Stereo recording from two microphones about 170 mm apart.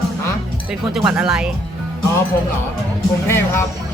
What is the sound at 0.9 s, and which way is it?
Speech, 5° right (ahead or behind).